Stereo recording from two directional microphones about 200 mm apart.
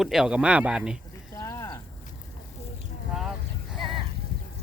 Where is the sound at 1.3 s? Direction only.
15° left (ahead or behind).